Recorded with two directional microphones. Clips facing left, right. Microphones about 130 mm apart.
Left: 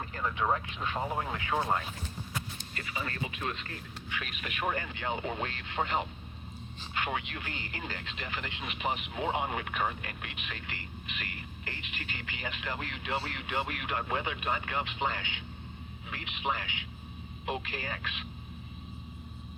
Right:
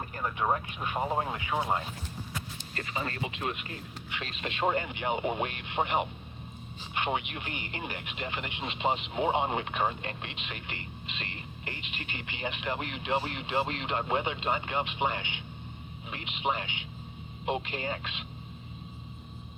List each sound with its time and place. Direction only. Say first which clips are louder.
0.2 s speech: right 1 dB; 20° right (ahead or behind)
2.7 s speech: right 3 dB; 35° right (ahead or behind)